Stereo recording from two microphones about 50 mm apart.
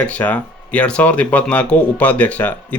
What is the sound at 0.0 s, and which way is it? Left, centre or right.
Speech, left.